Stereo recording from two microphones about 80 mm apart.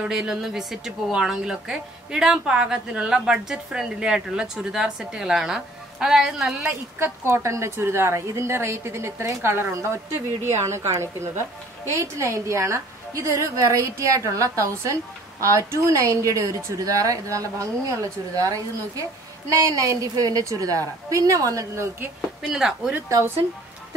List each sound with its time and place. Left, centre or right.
0.0 s a woman's voice: centre
7.0 s a woman's voice: right
22.5 s a woman's voice: centre